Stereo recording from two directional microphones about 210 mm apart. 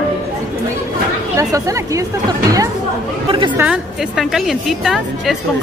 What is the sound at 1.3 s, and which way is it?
Speech, 15° right (ahead or behind).